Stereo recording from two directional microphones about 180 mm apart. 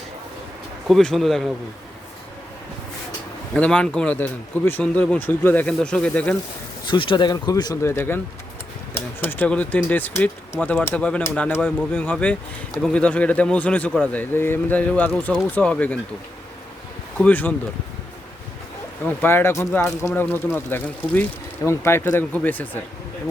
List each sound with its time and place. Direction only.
0.9 s speech: centre (ahead or behind)
3.5 s speech: 5° left (ahead or behind)
6.8 s speech: 25° left (ahead or behind); by 16.0 s 10° left (ahead or behind)
17.2 s speech: 10° left (ahead or behind)
19.0 s speech: 10° left (ahead or behind)